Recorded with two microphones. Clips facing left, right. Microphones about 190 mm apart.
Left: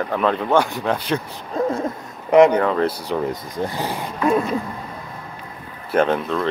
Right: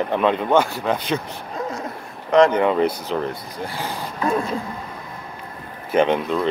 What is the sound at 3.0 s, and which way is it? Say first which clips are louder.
Speech: left 2 dB; 15° left (ahead or behind).